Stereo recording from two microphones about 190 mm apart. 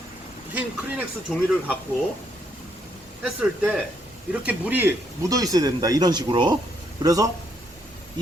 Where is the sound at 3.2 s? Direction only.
10° right (ahead or behind).